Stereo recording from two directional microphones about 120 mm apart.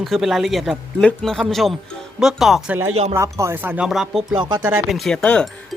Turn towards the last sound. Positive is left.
turn(degrees=5)  # may be behind; listen again after turning